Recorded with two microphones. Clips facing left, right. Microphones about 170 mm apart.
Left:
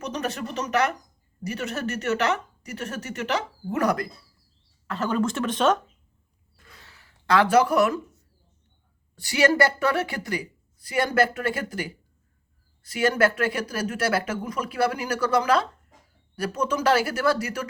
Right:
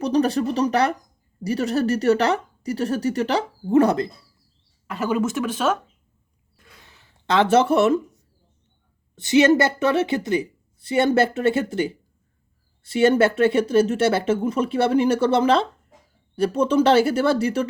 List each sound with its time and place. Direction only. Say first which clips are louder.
0.0 s a woman's voice: right 10 dB; 35° right (ahead or behind)
4.9 s speech: right 2 dB; 10° right (ahead or behind)
6.8 s speech: right 1 dB; 20° right (ahead or behind)
9.1 s speech: right 5 dB; 20° right (ahead or behind)